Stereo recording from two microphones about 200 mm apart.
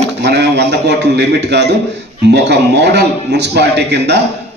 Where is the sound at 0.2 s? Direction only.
55° right (ahead or behind).